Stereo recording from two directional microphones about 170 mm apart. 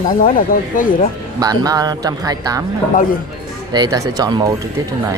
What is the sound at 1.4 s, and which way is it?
Speech, 20° right (ahead or behind).